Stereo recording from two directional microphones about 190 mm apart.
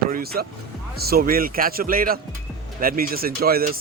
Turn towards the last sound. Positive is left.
turn(degrees=-50)  # may be behind; listen again after turning